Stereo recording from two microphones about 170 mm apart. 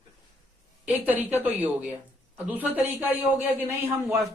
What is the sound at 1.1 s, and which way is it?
Speech, 10° right (ahead or behind).